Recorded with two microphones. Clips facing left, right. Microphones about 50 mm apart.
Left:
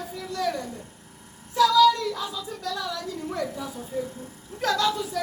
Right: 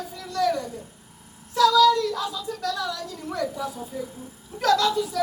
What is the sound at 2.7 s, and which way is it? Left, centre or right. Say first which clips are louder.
Speech: left 1 dB; left.